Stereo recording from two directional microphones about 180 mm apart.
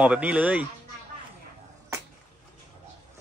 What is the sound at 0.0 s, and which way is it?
Speech, 5° right (ahead or behind).